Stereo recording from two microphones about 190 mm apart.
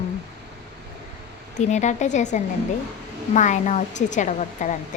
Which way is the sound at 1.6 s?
40° left (ahead or behind).